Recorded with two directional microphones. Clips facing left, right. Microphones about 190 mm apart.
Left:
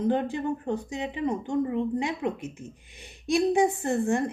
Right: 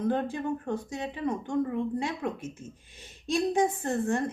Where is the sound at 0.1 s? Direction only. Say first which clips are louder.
Left 3 dB; 15° left (ahead or behind).